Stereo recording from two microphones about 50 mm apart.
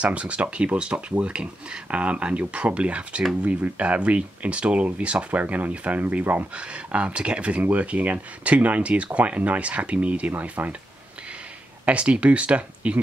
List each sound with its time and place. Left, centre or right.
0.0 s speech: right
6.5 s speech: right
11.8 s speech: right